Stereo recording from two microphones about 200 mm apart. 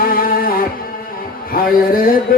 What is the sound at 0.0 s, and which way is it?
Music, 45° left (ahead or behind).